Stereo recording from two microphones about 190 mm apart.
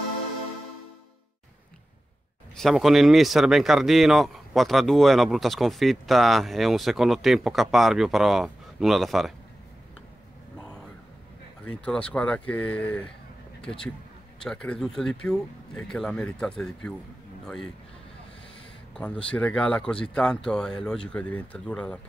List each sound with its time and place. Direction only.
2.5 s speech: centre (ahead or behind)
11.6 s speech: 5° left (ahead or behind)
14.4 s speech: 5° left (ahead or behind)
18.9 s speech: 5° left (ahead or behind)